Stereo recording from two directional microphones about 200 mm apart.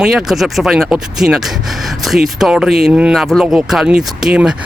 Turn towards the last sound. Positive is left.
turn(degrees=-5)  # may be behind; listen again after turning